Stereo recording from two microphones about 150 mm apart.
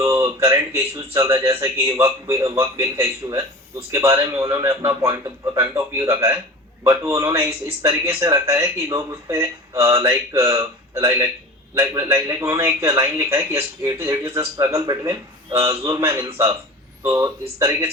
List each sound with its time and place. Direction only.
0.0 s speech: 20° right (ahead or behind)